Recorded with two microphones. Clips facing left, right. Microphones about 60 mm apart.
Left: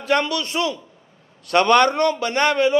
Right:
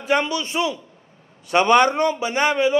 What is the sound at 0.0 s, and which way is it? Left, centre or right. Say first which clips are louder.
A man's voice: even; centre.